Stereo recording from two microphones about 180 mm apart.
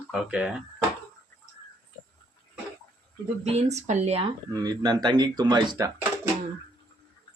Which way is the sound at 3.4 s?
40° right (ahead or behind).